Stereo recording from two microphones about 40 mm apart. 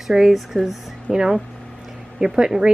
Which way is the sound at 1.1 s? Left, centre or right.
Centre.